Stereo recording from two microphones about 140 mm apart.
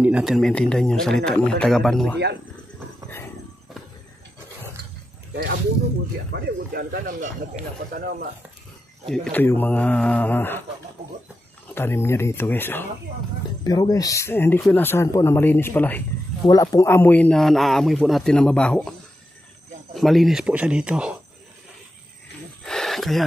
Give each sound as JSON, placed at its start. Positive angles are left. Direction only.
{"t": 0.0, "sound": "speech", "side_deg": -5}
{"t": 6.7, "sound": "speech", "side_deg": -90}
{"t": 9.1, "sound": "speech", "side_deg": 10}
{"t": 11.7, "sound": "speech", "side_deg": 15}
{"t": 13.7, "sound": "speech", "side_deg": 25}
{"t": 16.4, "sound": "speech", "side_deg": 25}
{"t": 22.6, "sound": "a sound", "side_deg": 0}